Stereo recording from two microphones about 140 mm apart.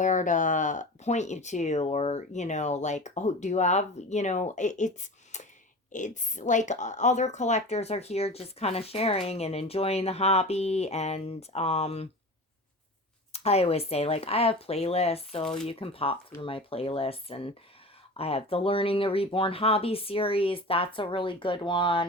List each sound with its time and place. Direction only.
0.0 s speech: 65° left (ahead or behind)
5.9 s speech: 65° left (ahead or behind); by 12.0 s 45° left (ahead or behind)
13.3 s speech: 45° left (ahead or behind)